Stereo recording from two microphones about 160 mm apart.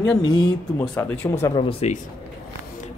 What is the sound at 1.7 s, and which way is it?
Speech, 40° left (ahead or behind).